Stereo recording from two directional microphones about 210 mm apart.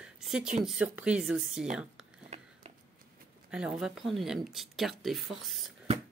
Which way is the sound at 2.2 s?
30° right (ahead or behind).